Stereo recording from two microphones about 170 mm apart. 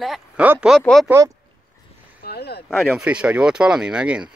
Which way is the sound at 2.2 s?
70° left (ahead or behind).